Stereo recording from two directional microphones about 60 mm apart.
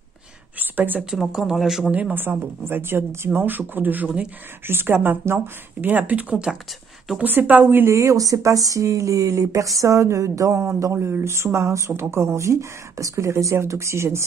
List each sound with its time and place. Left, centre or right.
0.6 s a sound: right
1.4 s a man's voice: centre
1.9 s speech: right
2.1 s speech: right
3.3 s speech: right
6.5 s a man's voice: centre
7.2 s speech: right
7.8 s speech: right
10.6 s speech: right